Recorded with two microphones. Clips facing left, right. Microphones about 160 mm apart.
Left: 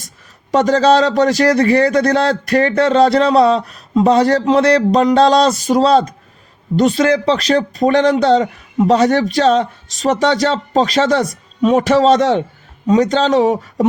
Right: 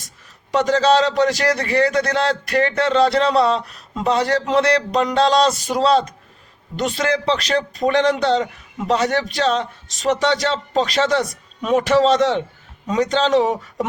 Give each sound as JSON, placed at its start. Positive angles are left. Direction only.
{"t": 0.5, "sound": "speech", "side_deg": 40}